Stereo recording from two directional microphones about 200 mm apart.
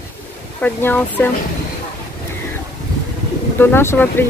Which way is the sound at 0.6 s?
5° left (ahead or behind).